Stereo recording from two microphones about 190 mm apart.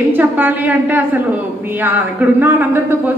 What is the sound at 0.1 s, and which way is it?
A woman's voice, 10° right (ahead or behind).